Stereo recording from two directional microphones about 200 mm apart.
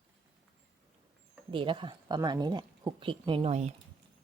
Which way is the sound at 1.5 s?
25° right (ahead or behind).